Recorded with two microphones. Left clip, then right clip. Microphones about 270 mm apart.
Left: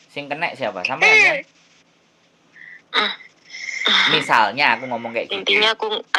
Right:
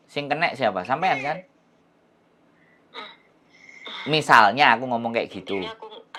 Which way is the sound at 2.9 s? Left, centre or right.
Left.